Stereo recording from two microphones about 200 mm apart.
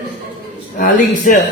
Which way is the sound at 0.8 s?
40° left (ahead or behind).